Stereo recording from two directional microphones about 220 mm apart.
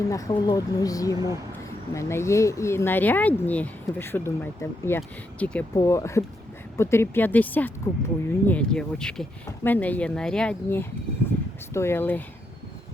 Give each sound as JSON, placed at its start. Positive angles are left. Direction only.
{"t": 0.1, "sound": "speech", "side_deg": 15}